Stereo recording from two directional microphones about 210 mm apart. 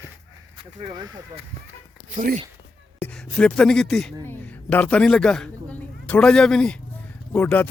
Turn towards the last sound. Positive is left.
turn(degrees=10)  # may be behind; listen again after turning